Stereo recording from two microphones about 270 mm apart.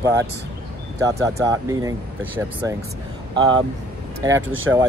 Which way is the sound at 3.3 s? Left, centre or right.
Centre.